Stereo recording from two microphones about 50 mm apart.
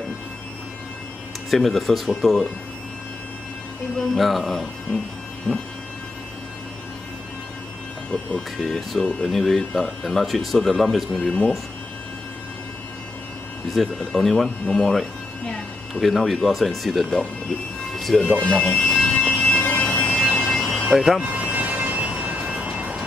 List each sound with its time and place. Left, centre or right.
1.5 s speech: centre
4.1 s speech: centre
8.1 s speech: centre
13.7 s speech: centre
18.4 s speech: centre
19.2 s emergency vehicle: left
20.2 s a sound: centre
20.9 s speech: centre
21.2 s vehicle: right